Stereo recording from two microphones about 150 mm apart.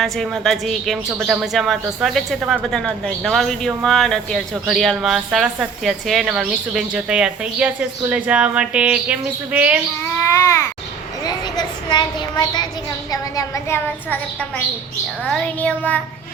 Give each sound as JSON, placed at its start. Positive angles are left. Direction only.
{"t": 0.0, "sound": "a woman's voice", "side_deg": 0}
{"t": 10.0, "sound": "a child's voice", "side_deg": 20}
{"t": 11.3, "sound": "a sound", "side_deg": 30}
{"t": 13.1, "sound": "a woman's voice", "side_deg": 20}
{"t": 15.3, "sound": "a woman's voice", "side_deg": 10}